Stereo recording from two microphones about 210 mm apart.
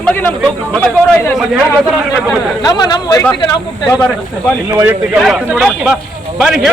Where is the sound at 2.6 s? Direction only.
15° left (ahead or behind).